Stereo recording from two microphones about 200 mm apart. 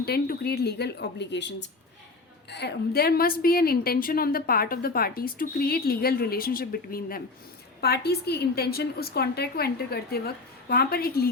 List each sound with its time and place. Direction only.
0.0 s a woman's voice: 50° left (ahead or behind)